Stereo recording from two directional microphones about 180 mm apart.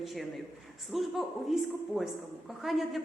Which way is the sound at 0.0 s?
Centre (ahead or behind).